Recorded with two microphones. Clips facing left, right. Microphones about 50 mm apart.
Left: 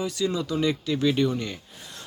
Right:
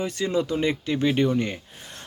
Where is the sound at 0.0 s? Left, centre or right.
Right.